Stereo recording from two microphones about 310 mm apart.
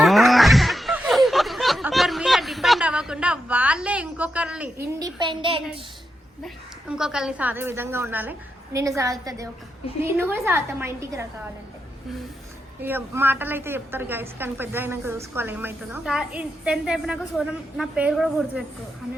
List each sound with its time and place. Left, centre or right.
0.0 s a sound: centre
6.4 s a woman's voice: centre
12.8 s a woman's voice: centre